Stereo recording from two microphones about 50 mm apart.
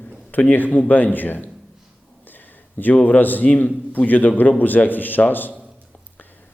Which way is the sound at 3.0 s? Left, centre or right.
Left.